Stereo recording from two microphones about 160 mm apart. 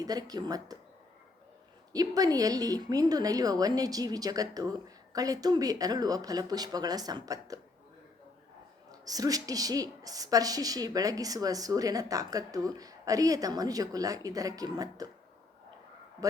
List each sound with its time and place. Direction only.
0.0 s a woman's voice: 25° right (ahead or behind)
1.9 s a woman's voice: 25° right (ahead or behind)
8.9 s a woman's voice: 20° right (ahead or behind)
16.2 s a woman's voice: 20° right (ahead or behind)